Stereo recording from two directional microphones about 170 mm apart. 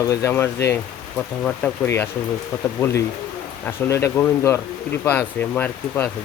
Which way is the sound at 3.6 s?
15° left (ahead or behind).